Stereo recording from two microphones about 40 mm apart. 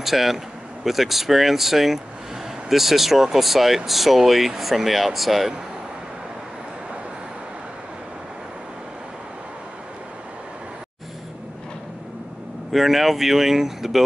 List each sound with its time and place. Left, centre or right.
0.0 s speech: centre
12.7 s speech: centre